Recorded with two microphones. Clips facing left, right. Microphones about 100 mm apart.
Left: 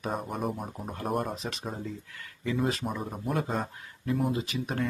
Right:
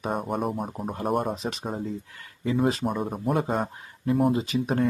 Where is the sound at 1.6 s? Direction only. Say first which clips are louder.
Right 5 dB; 35° right (ahead or behind).